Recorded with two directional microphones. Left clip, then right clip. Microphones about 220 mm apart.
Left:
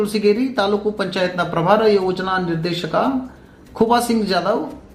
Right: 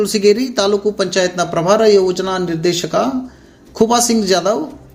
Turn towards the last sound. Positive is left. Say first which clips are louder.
# right 4 dB
turn(degrees=-35)  # may be behind; listen again after turning